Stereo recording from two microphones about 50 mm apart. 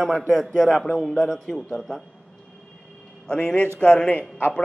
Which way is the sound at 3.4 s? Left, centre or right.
Left.